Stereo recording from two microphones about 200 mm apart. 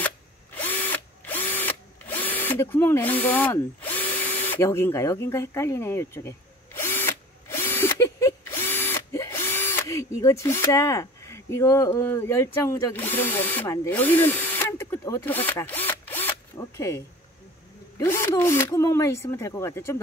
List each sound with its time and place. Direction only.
0.6 s drill: 10° left (ahead or behind)
17.9 s speech: 15° left (ahead or behind)